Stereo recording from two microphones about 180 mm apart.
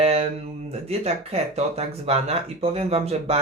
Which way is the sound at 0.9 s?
35° right (ahead or behind).